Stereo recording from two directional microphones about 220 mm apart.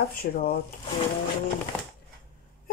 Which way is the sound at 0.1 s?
40° left (ahead or behind).